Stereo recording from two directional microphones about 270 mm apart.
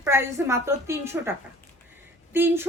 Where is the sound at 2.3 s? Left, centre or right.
Centre.